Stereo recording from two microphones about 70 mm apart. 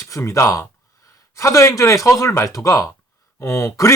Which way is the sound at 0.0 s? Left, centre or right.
Left.